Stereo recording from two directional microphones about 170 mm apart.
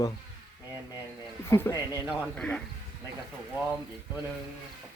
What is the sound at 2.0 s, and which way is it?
Speech, centre (ahead or behind).